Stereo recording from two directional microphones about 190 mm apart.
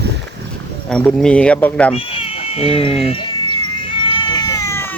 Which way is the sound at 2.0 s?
30° left (ahead or behind).